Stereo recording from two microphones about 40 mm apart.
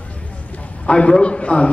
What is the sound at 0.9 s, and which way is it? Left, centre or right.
Speech, left.